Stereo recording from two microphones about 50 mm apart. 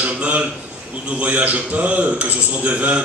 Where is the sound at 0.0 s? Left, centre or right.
Right.